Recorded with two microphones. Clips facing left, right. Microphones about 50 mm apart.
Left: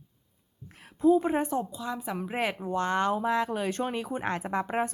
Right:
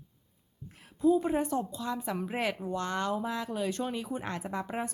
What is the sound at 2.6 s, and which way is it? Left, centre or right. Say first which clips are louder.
Speech: left 5 dB; left.